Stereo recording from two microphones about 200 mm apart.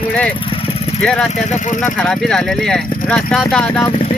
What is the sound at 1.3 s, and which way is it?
Speech, 35° left (ahead or behind).